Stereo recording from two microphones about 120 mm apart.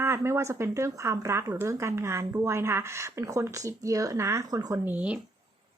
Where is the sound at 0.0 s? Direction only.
20° right (ahead or behind).